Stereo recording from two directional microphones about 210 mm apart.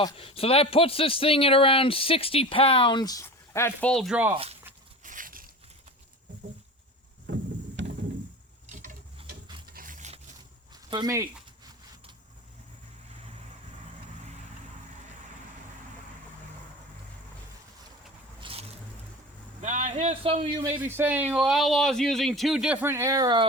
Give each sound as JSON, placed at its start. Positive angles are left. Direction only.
{"t": 0.0, "sound": "speech", "side_deg": 25}
{"t": 5.0, "sound": "a sound", "side_deg": -40}
{"t": 7.8, "sound": "a sound", "side_deg": -60}
{"t": 8.6, "sound": "a sound", "side_deg": -35}
{"t": 9.7, "sound": "zipper", "side_deg": -40}
{"t": 10.8, "sound": "speech", "side_deg": -20}
{"t": 18.3, "sound": "vehicle", "side_deg": -25}
{"t": 19.6, "sound": "speech", "side_deg": -35}
{"t": 20.6, "sound": "speech", "side_deg": -15}